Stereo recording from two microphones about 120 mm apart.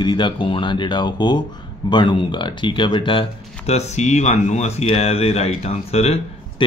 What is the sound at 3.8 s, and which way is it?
Speech, 70° left (ahead or behind).